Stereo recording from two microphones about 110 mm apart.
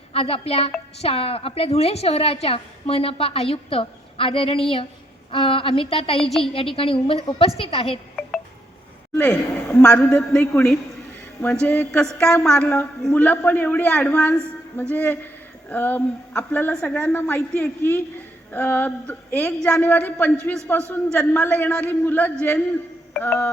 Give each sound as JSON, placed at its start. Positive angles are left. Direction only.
{"t": 0.1, "sound": "a woman's voice", "side_deg": 60}
{"t": 9.1, "sound": "a woman's voice", "side_deg": 10}
{"t": 11.6, "sound": "a woman's voice", "side_deg": 10}